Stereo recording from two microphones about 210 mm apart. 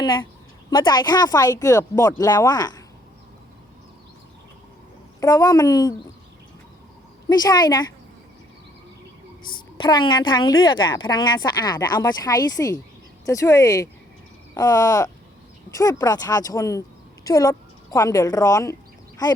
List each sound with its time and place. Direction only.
0.7 s speech: 20° left (ahead or behind)
5.2 s speech: 15° left (ahead or behind)
7.3 s a woman's voice: 20° left (ahead or behind)
9.7 s a woman's voice: 20° left (ahead or behind)